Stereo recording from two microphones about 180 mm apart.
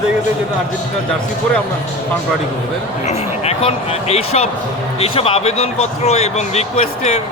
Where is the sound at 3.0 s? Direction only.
35° left (ahead or behind).